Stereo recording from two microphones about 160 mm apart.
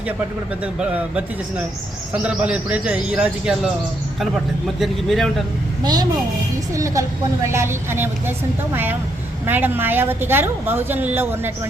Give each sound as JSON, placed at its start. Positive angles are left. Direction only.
{"t": 0.6, "sound": "a woman's voice", "side_deg": -10}
{"t": 4.8, "sound": "speech", "side_deg": 0}
{"t": 5.8, "sound": "a woman's voice", "side_deg": -25}